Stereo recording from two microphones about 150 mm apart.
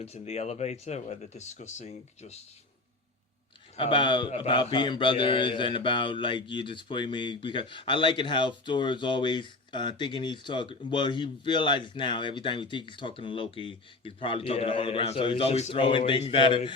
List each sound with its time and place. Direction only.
0.0 s speech: 45° left (ahead or behind)
3.8 s mantra: 35° left (ahead or behind)